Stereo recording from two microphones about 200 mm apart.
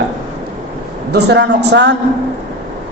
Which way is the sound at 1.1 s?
60° right (ahead or behind).